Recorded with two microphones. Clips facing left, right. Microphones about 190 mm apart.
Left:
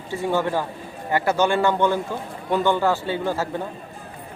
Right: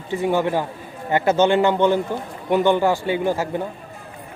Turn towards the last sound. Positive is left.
turn(degrees=-15)  # may be behind; listen again after turning